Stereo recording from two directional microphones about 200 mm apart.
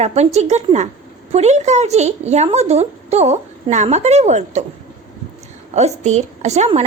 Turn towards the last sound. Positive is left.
turn(degrees=-35)  # may be behind; listen again after turning